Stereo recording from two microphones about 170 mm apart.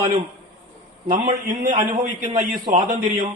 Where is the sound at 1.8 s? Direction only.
50° right (ahead or behind).